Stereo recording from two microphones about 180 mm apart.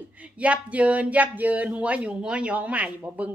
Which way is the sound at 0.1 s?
5° right (ahead or behind).